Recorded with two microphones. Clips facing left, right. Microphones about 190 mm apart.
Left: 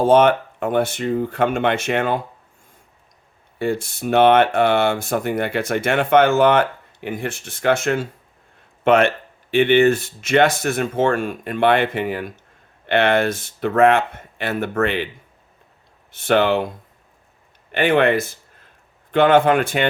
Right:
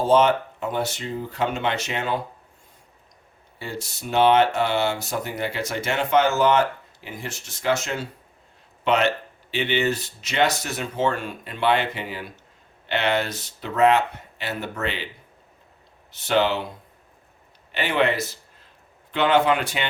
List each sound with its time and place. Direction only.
0.0 s speech: 55° left (ahead or behind)
3.6 s speech: 55° left (ahead or behind)
16.1 s speech: 55° left (ahead or behind)
17.7 s a sound: 55° left (ahead or behind)
19.1 s speech: 50° left (ahead or behind)